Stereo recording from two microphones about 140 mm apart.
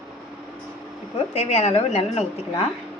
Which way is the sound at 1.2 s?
50° left (ahead or behind).